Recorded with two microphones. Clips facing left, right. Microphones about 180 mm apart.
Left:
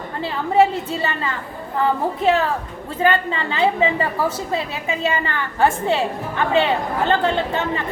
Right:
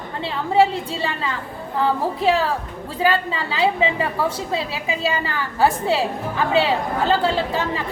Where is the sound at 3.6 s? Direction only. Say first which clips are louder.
Left 1 dB; centre (ahead or behind).